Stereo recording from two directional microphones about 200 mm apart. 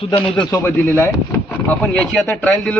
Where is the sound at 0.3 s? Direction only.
15° left (ahead or behind).